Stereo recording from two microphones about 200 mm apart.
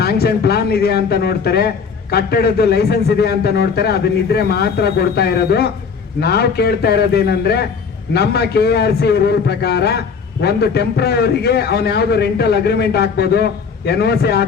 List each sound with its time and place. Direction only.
0.0 s speech: 55° left (ahead or behind)